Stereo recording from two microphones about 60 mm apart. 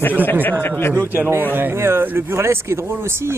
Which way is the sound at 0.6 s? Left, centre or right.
Left.